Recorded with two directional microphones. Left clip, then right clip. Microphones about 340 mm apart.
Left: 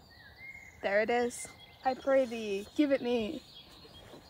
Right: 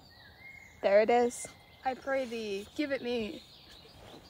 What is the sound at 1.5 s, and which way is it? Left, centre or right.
Speech, centre.